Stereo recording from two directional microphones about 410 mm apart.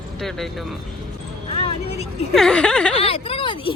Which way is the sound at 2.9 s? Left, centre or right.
Centre.